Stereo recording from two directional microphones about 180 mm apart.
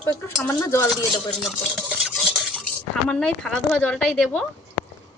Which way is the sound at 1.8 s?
Centre (ahead or behind).